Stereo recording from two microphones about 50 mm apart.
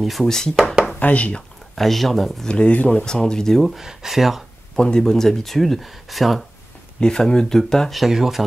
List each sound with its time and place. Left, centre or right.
0.0 s speech: centre
0.9 s speech: left
1.8 s speech: centre
2.4 s speech: left; by 4.5 s centre
4.7 s speech: centre
7.0 s speech: centre
7.9 s speech: centre